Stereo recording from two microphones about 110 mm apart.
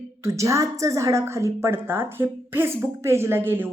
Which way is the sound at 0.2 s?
25° right (ahead or behind).